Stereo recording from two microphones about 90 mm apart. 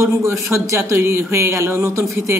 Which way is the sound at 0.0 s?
30° right (ahead or behind).